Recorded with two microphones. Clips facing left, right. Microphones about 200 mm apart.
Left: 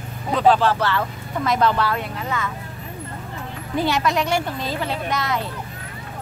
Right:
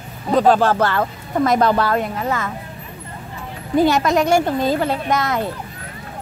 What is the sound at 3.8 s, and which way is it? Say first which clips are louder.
Speech: right 6 dB; 45° right (ahead or behind).